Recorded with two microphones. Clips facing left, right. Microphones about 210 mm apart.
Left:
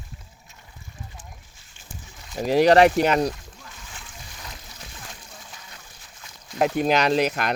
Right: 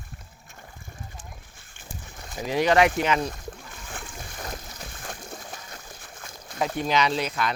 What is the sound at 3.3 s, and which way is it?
Splash, 55° right (ahead or behind).